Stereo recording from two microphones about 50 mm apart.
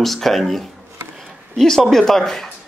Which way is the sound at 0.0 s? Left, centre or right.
Centre.